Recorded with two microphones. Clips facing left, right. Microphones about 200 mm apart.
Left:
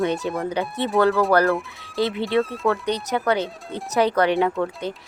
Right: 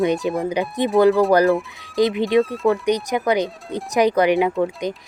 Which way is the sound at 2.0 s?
15° right (ahead or behind).